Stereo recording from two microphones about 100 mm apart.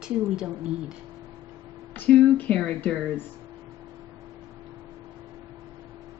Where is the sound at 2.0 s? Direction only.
15° left (ahead or behind).